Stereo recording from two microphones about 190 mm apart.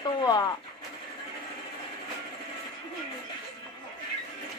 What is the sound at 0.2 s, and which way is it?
Speech, 20° left (ahead or behind).